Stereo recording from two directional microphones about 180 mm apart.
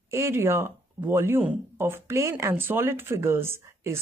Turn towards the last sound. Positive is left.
turn(degrees=-15)  # may be behind; listen again after turning